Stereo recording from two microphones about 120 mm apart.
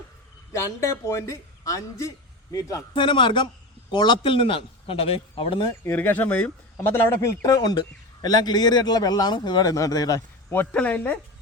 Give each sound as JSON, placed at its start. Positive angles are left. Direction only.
{"t": 0.5, "sound": "a woman's voice", "side_deg": 25}
{"t": 2.9, "sound": "a man's voice", "side_deg": 45}
{"t": 5.8, "sound": "a man's voice", "side_deg": 20}